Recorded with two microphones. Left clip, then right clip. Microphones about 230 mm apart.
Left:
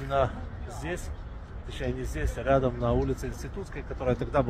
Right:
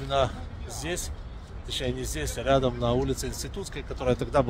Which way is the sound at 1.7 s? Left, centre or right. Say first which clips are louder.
Right 3 dB; centre.